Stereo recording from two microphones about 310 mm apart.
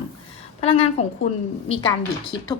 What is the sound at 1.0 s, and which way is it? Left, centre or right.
Speech, left.